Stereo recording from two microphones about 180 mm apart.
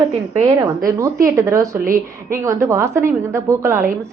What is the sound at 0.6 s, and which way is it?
A woman's voice, 20° right (ahead or behind).